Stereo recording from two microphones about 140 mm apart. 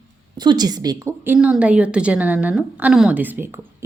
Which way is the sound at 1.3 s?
5° right (ahead or behind).